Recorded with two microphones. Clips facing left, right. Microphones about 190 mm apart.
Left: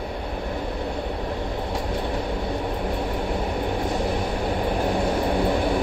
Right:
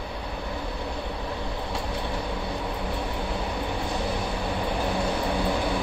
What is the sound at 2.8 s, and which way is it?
Vehicle, 50° left (ahead or behind).